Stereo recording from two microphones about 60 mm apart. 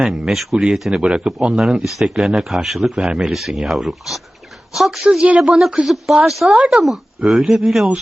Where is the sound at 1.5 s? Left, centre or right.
Centre.